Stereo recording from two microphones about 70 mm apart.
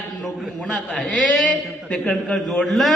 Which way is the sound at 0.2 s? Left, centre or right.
Centre.